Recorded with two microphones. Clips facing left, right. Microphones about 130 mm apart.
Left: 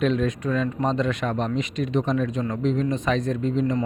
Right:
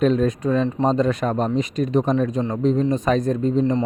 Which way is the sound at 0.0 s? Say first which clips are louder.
Right 4 dB; 40° right (ahead or behind).